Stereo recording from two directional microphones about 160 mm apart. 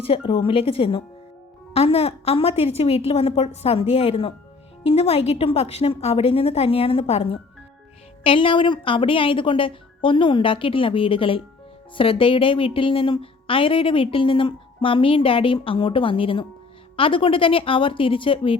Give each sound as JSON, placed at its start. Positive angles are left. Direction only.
{"t": 0.0, "sound": "a woman's voice", "side_deg": 35}